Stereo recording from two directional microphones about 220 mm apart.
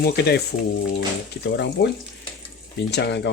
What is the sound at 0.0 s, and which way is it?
Speech, 45° left (ahead or behind).